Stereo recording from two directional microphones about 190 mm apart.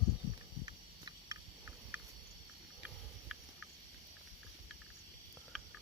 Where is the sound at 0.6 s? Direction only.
20° right (ahead or behind).